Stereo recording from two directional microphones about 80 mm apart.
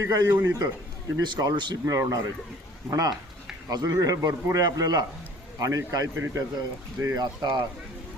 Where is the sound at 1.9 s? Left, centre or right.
Right.